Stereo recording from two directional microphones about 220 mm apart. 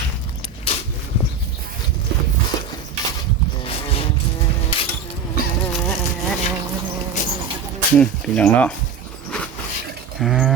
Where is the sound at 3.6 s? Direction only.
25° left (ahead or behind).